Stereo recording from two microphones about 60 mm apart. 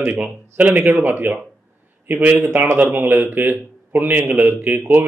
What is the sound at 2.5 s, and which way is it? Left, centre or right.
A man's voice, right.